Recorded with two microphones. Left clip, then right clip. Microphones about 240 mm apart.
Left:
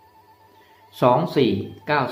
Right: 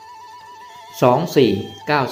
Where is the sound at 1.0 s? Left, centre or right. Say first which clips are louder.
Right 3 dB; centre.